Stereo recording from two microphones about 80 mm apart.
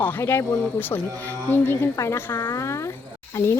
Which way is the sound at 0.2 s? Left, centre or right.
Left.